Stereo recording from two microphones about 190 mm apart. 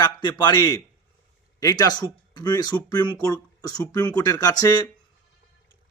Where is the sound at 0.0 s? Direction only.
20° left (ahead or behind).